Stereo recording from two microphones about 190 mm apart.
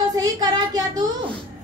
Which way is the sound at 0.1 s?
20° right (ahead or behind).